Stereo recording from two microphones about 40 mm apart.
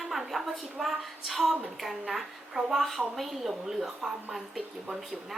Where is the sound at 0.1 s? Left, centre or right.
Centre.